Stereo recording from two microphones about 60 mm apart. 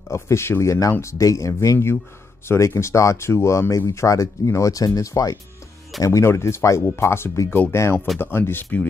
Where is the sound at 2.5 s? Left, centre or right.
Left.